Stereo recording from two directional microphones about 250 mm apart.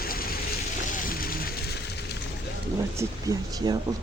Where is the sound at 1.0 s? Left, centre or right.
Left.